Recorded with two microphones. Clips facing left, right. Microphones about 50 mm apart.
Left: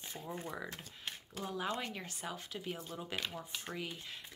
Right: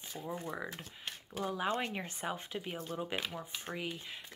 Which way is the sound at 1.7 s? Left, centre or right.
Right.